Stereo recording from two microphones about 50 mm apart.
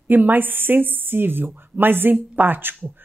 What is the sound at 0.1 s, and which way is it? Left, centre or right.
Speech, right.